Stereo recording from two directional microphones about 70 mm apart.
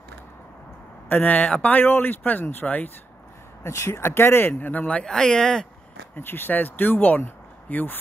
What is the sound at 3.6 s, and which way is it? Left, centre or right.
Speech, left.